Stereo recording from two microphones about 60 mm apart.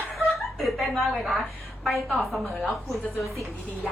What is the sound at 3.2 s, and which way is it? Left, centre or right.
Speech, left.